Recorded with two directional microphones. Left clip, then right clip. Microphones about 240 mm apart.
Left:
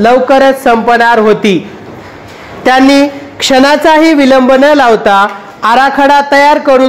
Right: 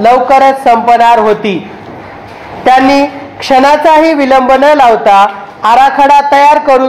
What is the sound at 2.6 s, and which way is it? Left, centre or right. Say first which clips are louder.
Speech: even; left.